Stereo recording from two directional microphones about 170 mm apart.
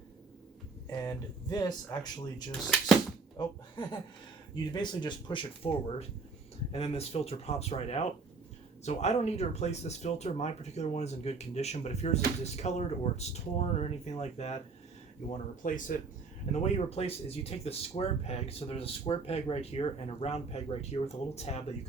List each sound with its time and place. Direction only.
0.9 s speech: 25° left (ahead or behind)
2.6 s speech: centre (ahead or behind)
3.3 s speech: 25° left (ahead or behind)
15.6 s speech: 50° left (ahead or behind)
16.5 s speech: 40° left (ahead or behind)